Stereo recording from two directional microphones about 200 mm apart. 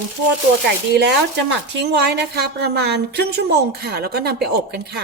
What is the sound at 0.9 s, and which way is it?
A woman's voice, 60° right (ahead or behind).